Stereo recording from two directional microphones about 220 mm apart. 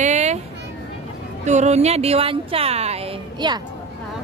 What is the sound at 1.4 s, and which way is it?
Speech, 30° right (ahead or behind).